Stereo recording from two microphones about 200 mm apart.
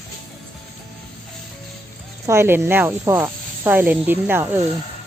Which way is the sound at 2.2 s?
15° right (ahead or behind).